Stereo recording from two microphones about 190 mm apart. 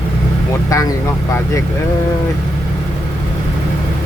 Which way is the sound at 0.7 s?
15° left (ahead or behind).